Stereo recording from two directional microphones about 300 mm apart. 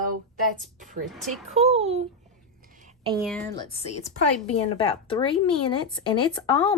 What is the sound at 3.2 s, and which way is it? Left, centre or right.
Speech, centre.